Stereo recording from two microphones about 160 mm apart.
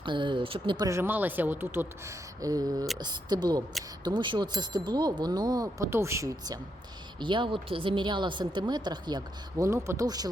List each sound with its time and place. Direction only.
0.0 s speech: 30° right (ahead or behind)
0.9 s a woman's voice: 15° right (ahead or behind)